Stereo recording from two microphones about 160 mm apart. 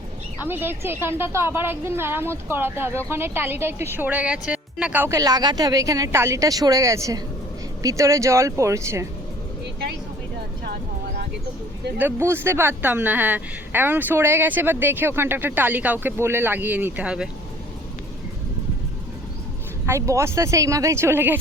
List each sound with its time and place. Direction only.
0.4 s a woman's voice: 15° right (ahead or behind)
11.9 s a woman's voice: 15° right (ahead or behind)
19.8 s speech: 20° right (ahead or behind)